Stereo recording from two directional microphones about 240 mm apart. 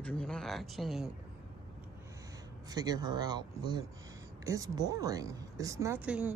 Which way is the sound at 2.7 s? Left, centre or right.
Centre.